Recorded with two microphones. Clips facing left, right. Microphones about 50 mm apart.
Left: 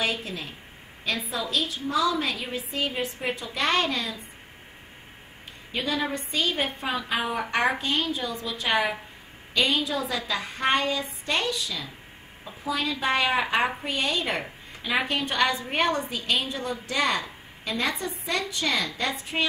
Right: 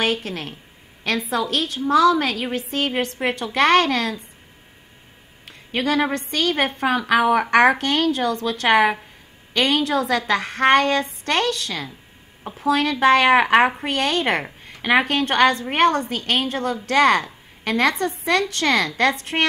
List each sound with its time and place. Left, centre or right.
0.0 s a woman's voice: right
1.0 s a woman's voice: right
5.4 s a woman's voice: right
14.7 s a woman's voice: right